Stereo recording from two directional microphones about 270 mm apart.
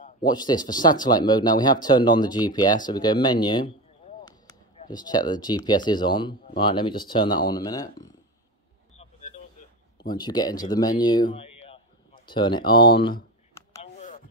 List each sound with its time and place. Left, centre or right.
0.3 s speech: centre
9.9 s speech: centre
13.9 s a sound: left